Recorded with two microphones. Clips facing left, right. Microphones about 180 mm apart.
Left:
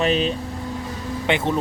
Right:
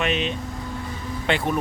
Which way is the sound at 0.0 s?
35° left (ahead or behind).